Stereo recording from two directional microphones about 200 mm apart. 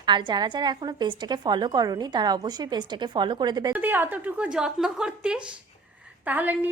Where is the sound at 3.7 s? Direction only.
10° right (ahead or behind).